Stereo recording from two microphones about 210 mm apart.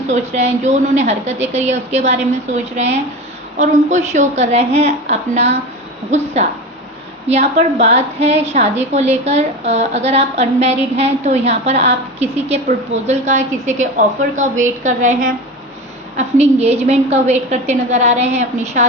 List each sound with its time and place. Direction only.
0.1 s a woman's voice: 35° right (ahead or behind)
16.1 s a woman's voice: 30° right (ahead or behind)